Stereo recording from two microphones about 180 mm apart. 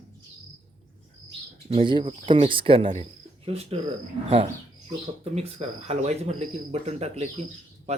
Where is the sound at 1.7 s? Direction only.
30° right (ahead or behind).